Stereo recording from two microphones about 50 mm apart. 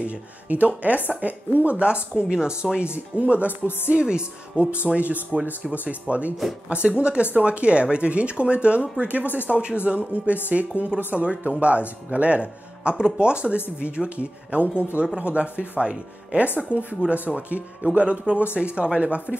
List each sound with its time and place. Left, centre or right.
0.0 s speech: right
2.9 s speech: right
10.7 s speech: left
11.1 s speech: right